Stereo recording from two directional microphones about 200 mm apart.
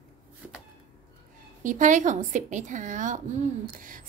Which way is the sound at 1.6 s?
40° right (ahead or behind).